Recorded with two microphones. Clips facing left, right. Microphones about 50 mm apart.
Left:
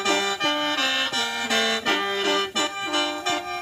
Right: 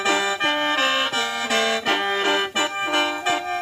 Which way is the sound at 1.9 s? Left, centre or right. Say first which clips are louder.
Right 2 dB; right.